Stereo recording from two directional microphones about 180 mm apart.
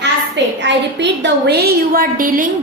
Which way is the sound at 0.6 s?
75° right (ahead or behind).